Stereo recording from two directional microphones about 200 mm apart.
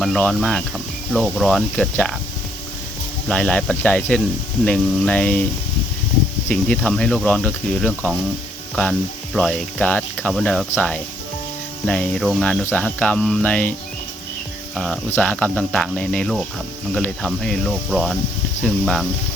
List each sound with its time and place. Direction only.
0.0 s speech: centre (ahead or behind)
3.2 s speech: 5° left (ahead or behind)
6.5 s speech: 5° left (ahead or behind)
14.8 s speech: 5° left (ahead or behind)